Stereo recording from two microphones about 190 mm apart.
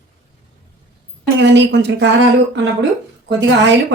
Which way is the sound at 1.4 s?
70° right (ahead or behind).